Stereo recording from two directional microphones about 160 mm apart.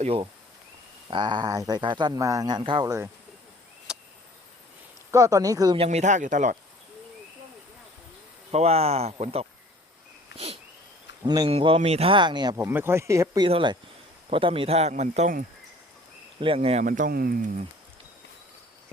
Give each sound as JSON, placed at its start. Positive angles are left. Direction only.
{"t": 0.0, "sound": "speech", "side_deg": -35}
{"t": 3.9, "sound": "a sound", "side_deg": -5}
{"t": 5.1, "sound": "speech", "side_deg": -20}
{"t": 5.7, "sound": "speech", "side_deg": -40}
{"t": 8.5, "sound": "speech", "side_deg": -40}
{"t": 10.3, "sound": "a sound", "side_deg": -40}
{"t": 11.3, "sound": "speech", "side_deg": -30}
{"t": 12.6, "sound": "speech", "side_deg": -15}
{"t": 13.5, "sound": "speech", "side_deg": -30}
{"t": 16.4, "sound": "speech", "side_deg": -35}